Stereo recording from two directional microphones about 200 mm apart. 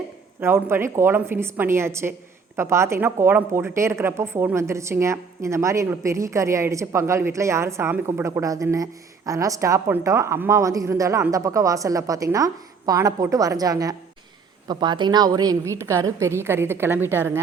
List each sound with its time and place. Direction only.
0.3 s speech: 10° right (ahead or behind)